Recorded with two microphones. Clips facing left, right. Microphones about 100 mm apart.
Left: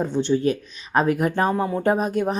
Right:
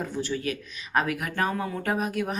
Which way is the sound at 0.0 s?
25° left (ahead or behind).